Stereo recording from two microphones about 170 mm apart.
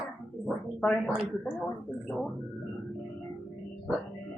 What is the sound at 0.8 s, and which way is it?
Speech, 5° left (ahead or behind).